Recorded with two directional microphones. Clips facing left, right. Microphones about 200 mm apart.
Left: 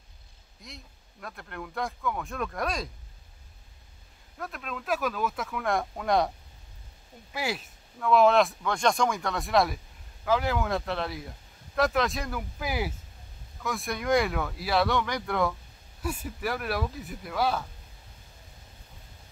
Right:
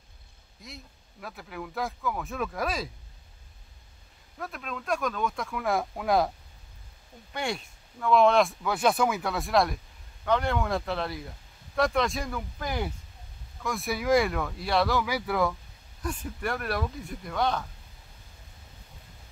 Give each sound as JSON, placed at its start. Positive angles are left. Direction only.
{"t": 0.6, "sound": "speech", "side_deg": 0}
{"t": 4.4, "sound": "speech", "side_deg": 0}
{"t": 7.3, "sound": "speech", "side_deg": 5}
{"t": 16.0, "sound": "speech", "side_deg": 5}